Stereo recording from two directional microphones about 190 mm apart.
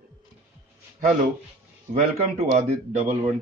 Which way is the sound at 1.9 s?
40° right (ahead or behind).